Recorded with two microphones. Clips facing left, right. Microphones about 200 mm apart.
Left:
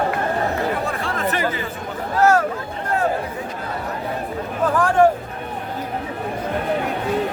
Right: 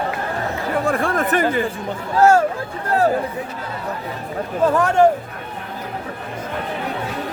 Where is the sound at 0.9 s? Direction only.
50° right (ahead or behind).